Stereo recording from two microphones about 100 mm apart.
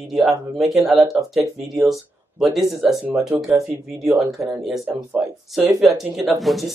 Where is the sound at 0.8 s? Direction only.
Centre (ahead or behind).